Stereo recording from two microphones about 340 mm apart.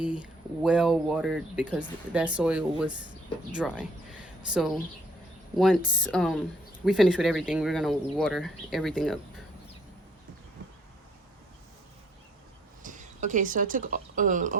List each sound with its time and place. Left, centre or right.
0.0 s speech: centre
12.8 s speech: right